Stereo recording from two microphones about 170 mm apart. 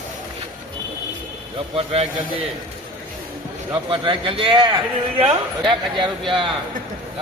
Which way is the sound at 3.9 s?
30° right (ahead or behind).